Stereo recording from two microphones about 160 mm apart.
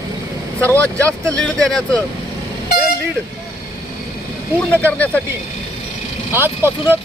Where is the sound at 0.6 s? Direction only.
10° left (ahead or behind).